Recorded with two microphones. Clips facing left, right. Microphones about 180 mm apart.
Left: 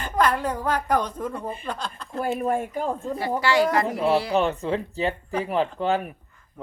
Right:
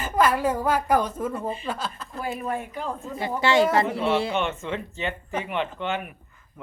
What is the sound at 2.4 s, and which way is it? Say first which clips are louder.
Speech: left 5 dB; 50° left (ahead or behind).